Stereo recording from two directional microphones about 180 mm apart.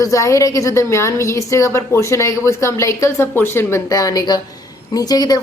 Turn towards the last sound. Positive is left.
turn(degrees=20)  # may be behind; listen again after turning